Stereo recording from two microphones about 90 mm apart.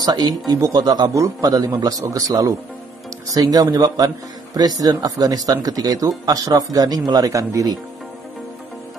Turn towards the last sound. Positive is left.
turn(degrees=-40)  # may be behind; listen again after turning